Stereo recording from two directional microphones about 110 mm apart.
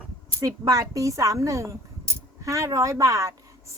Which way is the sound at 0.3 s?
35° right (ahead or behind).